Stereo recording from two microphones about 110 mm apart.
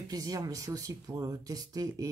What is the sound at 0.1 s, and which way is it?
Speech, 35° right (ahead or behind).